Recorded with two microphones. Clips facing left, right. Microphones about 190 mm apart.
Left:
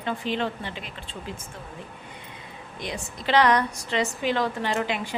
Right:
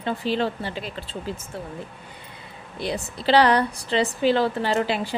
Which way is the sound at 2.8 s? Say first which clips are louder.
Right 6 dB; 35° right (ahead or behind).